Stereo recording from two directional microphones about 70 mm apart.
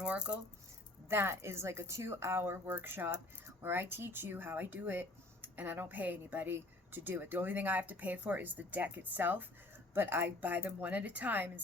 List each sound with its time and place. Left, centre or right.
0.0 s speech: centre
1.1 s a woman's voice: right